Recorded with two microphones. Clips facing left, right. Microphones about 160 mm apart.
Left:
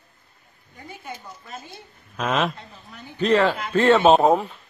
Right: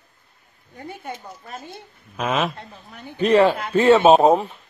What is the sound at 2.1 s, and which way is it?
Speech, 5° right (ahead or behind).